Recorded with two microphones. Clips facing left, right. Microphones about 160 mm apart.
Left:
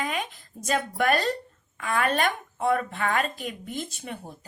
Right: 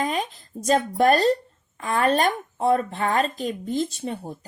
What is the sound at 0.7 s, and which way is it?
Speech, 35° right (ahead or behind).